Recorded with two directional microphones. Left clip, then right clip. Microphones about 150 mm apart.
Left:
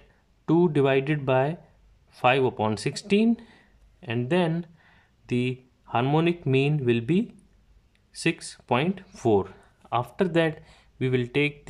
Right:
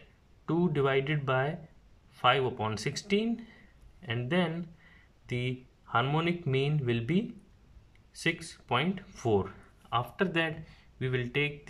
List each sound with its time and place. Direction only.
0.5 s speech: 35° left (ahead or behind)